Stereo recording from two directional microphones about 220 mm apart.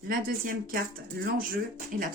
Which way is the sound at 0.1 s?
40° right (ahead or behind).